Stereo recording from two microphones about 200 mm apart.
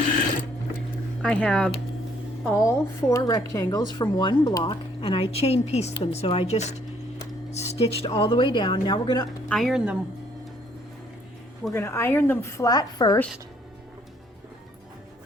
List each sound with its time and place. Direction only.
1.2 s speech: 5° left (ahead or behind)
2.5 s a woman's voice: 15° left (ahead or behind); by 6.8 s 35° left (ahead or behind)
7.5 s a sound: 30° left (ahead or behind)
8.0 s a woman's voice: 25° left (ahead or behind)
9.5 s speech: centre (ahead or behind)
11.7 s a woman's voice: 10° left (ahead or behind)